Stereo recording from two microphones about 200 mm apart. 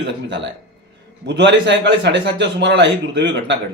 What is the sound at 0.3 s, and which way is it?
A man's voice, 65° right (ahead or behind).